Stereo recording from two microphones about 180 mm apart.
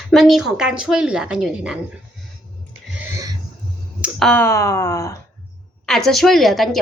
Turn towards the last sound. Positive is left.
turn(degrees=0)  # may be behind; listen again after turning